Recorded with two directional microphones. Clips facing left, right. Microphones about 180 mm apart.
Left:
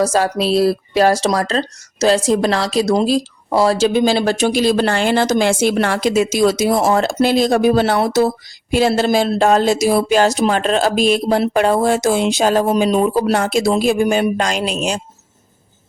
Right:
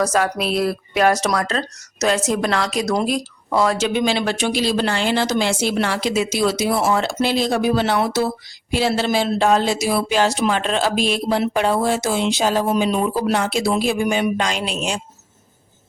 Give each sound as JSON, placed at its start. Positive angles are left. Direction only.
{"t": 0.0, "sound": "speech", "side_deg": 30}
{"t": 12.7, "sound": "speech", "side_deg": 35}